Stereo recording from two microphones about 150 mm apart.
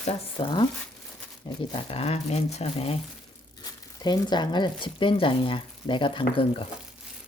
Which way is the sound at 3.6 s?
30° left (ahead or behind).